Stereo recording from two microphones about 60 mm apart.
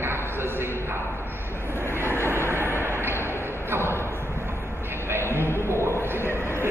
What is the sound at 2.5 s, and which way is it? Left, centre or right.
Vehicle, right.